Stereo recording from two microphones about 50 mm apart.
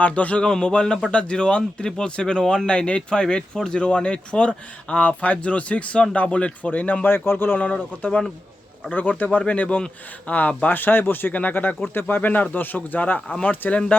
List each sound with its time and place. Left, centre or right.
0.0 s speech: left
2.4 s speech: centre
2.6 s speech: centre
7.1 s speech: left
7.6 s speech: left
10.7 s speech: left